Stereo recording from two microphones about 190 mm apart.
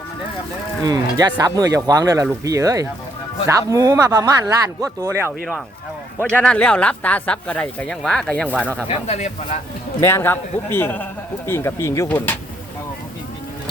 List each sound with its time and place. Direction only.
0.9 s speech: 20° right (ahead or behind)
6.1 s speech: 5° left (ahead or behind)
8.9 s speech: 35° left (ahead or behind)
10.0 s a man's voice: 15° left (ahead or behind)